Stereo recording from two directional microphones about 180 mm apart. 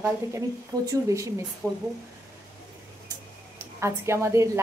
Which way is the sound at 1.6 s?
10° left (ahead or behind).